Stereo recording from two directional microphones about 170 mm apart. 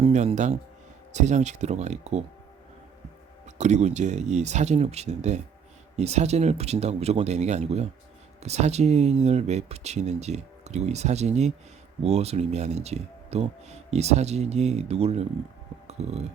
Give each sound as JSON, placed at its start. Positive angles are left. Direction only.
{"t": 0.0, "sound": "speech", "side_deg": -40}
{"t": 3.4, "sound": "speech", "side_deg": -45}
{"t": 15.9, "sound": "a sound", "side_deg": -40}